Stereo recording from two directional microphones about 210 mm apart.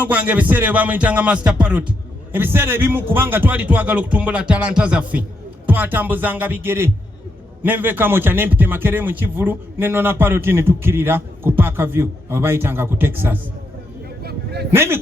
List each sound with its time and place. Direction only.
0.0 s a man's voice: 10° right (ahead or behind)
14.3 s a sound: 50° right (ahead or behind)
14.7 s a man's voice: 10° right (ahead or behind)